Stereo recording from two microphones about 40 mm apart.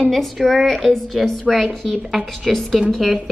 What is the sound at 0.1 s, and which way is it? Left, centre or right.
A woman's voice, centre.